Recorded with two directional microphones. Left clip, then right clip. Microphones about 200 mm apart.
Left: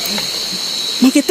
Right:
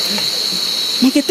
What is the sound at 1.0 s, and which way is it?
Cricket, 30° left (ahead or behind).